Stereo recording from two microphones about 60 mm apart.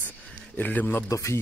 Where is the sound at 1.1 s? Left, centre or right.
Left.